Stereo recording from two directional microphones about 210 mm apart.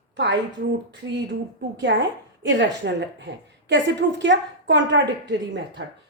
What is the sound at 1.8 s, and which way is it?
A woman's voice, 55° right (ahead or behind).